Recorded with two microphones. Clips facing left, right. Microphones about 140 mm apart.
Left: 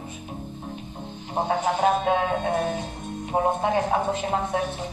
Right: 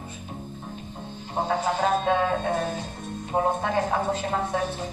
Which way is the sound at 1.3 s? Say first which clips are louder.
Left 1 dB; 20° left (ahead or behind).